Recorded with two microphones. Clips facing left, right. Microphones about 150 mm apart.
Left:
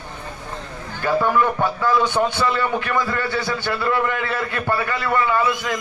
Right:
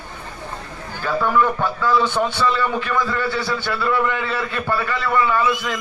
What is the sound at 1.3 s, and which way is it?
A man's voice, 15° left (ahead or behind).